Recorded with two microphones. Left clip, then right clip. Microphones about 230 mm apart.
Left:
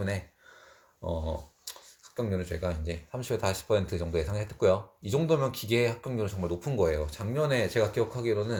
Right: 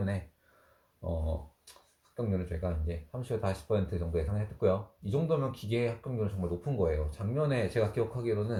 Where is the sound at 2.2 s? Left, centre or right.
Left.